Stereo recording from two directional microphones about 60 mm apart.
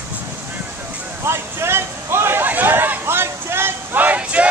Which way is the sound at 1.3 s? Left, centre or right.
Right.